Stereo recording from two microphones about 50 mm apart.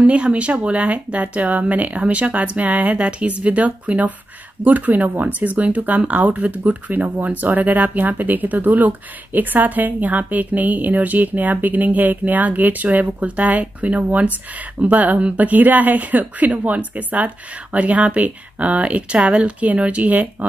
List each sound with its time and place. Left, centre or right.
0.0 s speech: right